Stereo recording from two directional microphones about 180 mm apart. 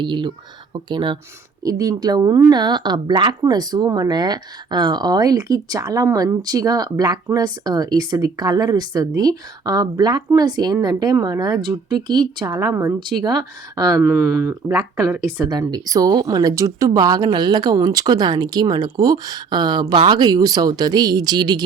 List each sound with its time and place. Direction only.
0.0 s speech: 25° right (ahead or behind)
14.7 s speech: centre (ahead or behind)
15.4 s speech: 20° right (ahead or behind)